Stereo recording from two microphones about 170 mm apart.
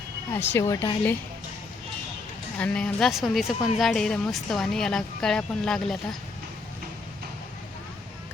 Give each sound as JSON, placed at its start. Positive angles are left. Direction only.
{"t": 0.5, "sound": "a woman's voice", "side_deg": 15}
{"t": 2.6, "sound": "speech", "side_deg": 5}